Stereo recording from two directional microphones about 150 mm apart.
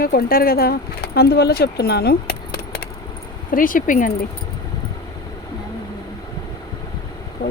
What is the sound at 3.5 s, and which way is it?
Speech, 65° left (ahead or behind).